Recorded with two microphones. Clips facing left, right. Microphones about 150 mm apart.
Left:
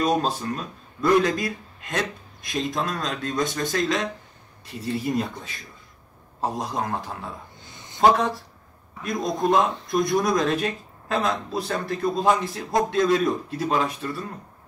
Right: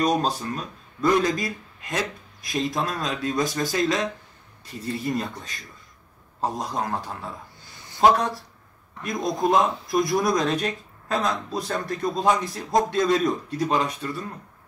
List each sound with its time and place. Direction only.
0.0 s a man's voice: centre (ahead or behind)
7.6 s a sound: 20° left (ahead or behind)
8.0 s a man's voice: centre (ahead or behind)